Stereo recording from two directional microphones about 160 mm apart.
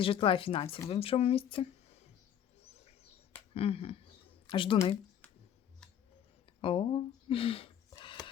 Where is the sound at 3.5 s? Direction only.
35° left (ahead or behind).